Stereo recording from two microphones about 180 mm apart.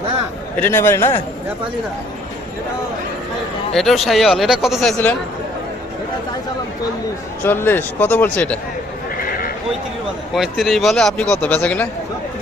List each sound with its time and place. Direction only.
0.5 s speech: 10° left (ahead or behind)
3.8 s a man's voice: centre (ahead or behind)
7.4 s speech: 10° left (ahead or behind)
10.3 s a man's voice: centre (ahead or behind)